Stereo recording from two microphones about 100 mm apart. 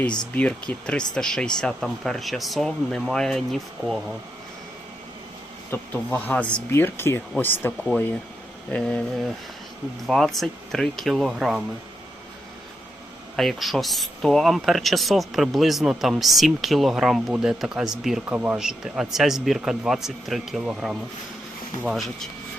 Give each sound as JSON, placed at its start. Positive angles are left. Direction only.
{"t": 0.3, "sound": "speech", "side_deg": 15}
{"t": 5.9, "sound": "speech", "side_deg": 20}
{"t": 6.7, "sound": "speech", "side_deg": 25}
{"t": 8.7, "sound": "speech", "side_deg": 10}
{"t": 13.3, "sound": "speech", "side_deg": 0}